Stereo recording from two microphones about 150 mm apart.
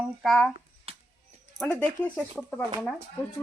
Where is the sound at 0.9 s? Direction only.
40° right (ahead or behind).